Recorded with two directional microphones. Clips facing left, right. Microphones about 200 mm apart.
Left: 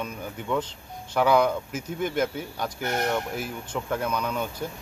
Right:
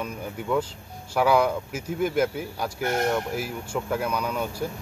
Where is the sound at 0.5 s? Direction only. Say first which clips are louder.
Right 2 dB; 5° right (ahead or behind).